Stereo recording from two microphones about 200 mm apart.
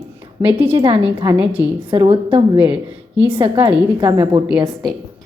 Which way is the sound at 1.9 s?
25° right (ahead or behind).